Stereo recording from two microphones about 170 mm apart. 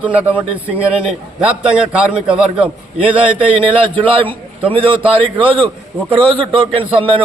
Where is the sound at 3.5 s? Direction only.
30° right (ahead or behind).